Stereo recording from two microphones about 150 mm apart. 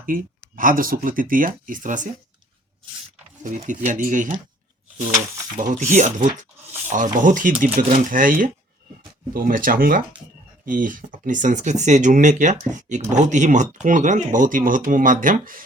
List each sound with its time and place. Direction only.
0.0 s speech: 70° right (ahead or behind)
3.4 s speech: 55° right (ahead or behind)
5.5 s speech: 60° right (ahead or behind)
7.8 s speech: 75° right (ahead or behind)